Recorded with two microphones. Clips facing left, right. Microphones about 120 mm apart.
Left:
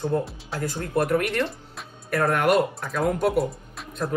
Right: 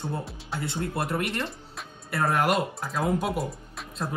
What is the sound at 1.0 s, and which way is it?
Speech, 30° right (ahead or behind).